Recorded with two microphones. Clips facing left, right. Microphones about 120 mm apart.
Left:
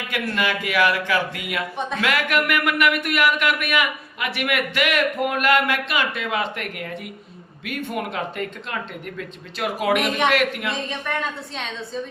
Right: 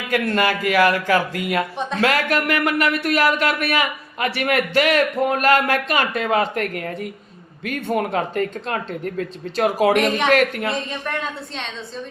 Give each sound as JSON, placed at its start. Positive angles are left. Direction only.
{"t": 0.1, "sound": "speech", "side_deg": -40}
{"t": 7.9, "sound": "a woman's voice", "side_deg": -40}